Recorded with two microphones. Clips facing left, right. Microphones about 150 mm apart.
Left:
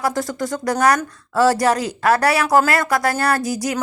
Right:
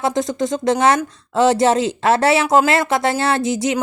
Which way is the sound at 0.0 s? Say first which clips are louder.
Right 3 dB; 20° right (ahead or behind).